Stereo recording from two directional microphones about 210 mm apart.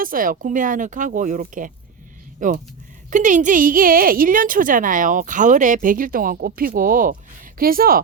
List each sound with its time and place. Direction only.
0.0 s a woman's voice: 40° right (ahead or behind)